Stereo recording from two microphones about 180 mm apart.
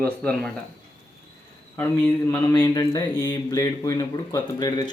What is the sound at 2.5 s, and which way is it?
Speech, 20° left (ahead or behind).